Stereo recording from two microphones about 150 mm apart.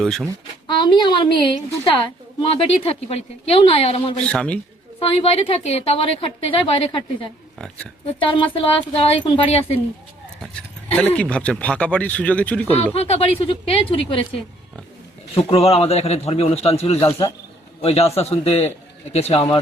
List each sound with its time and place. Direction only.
0.0 s speech: 5° left (ahead or behind)
0.7 s a woman's voice: 30° left (ahead or behind)
2.4 s a woman's voice: 40° left (ahead or behind)
4.3 s speech: 5° left (ahead or behind)
4.9 s a woman's voice: 40° left (ahead or behind)
8.0 s a woman's voice: 35° left (ahead or behind)
10.9 s speech: 10° left (ahead or behind)
12.9 s a woman's voice: 40° left (ahead or behind)
15.4 s a man's voice: 40° left (ahead or behind)
17.1 s a man's voice: 20° left (ahead or behind)
17.8 s a man's voice: 45° left (ahead or behind)